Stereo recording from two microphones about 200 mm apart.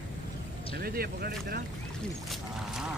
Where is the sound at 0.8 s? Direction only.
50° right (ahead or behind).